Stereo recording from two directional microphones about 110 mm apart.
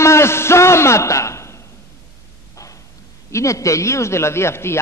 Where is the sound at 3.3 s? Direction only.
25° left (ahead or behind).